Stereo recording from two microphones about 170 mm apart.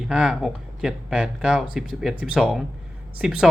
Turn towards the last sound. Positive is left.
turn(degrees=-5)  # may be behind; listen again after turning